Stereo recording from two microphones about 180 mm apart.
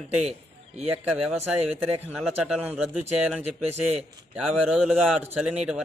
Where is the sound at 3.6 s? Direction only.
35° right (ahead or behind).